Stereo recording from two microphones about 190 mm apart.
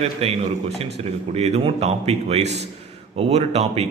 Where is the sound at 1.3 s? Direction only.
35° right (ahead or behind).